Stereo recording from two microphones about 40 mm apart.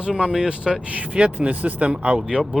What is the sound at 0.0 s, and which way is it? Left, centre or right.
Speech, right.